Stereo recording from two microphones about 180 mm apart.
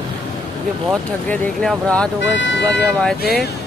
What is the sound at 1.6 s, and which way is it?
Speech, 5° left (ahead or behind).